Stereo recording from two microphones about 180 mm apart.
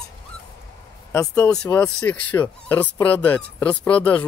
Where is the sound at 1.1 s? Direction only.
15° left (ahead or behind).